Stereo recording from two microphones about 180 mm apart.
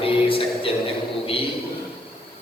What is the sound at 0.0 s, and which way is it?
Music, 30° left (ahead or behind).